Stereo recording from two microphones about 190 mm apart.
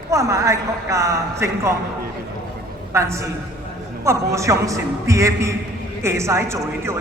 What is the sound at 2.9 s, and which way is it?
A woman's voice, 15° right (ahead or behind).